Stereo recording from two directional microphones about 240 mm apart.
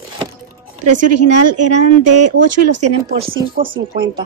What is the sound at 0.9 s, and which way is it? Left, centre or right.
Speech, right.